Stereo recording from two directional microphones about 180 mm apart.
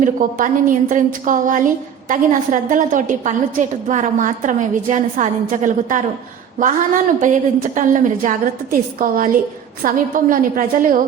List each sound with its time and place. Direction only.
0.0 s a woman's voice: 50° right (ahead or behind)